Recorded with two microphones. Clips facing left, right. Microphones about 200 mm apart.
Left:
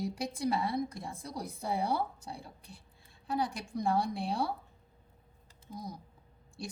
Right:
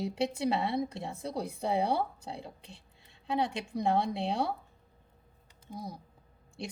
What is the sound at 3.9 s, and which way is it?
Speech, 25° right (ahead or behind).